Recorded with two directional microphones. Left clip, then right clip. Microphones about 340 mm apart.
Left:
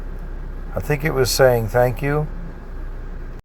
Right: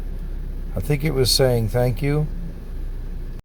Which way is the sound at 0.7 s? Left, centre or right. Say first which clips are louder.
Left 3 dB; left.